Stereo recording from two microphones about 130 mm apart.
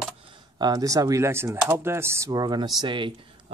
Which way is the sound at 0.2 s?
40° right (ahead or behind).